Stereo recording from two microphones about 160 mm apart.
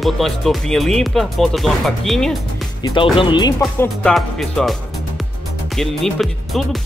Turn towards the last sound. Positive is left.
turn(degrees=0)  # may be behind; listen again after turning